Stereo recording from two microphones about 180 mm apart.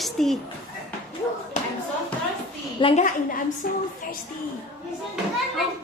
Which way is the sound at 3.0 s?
50° left (ahead or behind).